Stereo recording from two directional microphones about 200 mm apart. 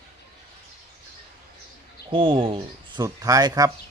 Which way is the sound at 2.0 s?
25° right (ahead or behind).